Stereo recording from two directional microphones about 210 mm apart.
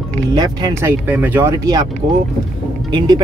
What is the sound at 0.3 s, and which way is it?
Speech, 20° right (ahead or behind).